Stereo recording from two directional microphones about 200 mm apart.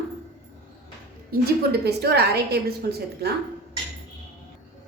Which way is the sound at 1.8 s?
55° right (ahead or behind).